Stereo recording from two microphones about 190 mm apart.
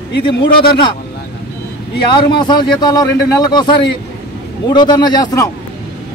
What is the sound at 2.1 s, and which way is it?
Speech, 25° left (ahead or behind).